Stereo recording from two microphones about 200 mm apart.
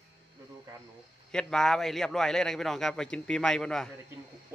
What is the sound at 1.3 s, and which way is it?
A man's voice, 5° left (ahead or behind).